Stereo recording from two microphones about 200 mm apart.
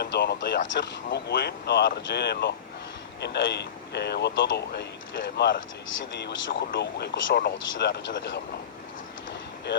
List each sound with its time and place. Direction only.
0.0 s speech: 55° left (ahead or behind)